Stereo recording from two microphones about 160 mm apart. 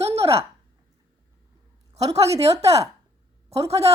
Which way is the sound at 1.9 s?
40° right (ahead or behind).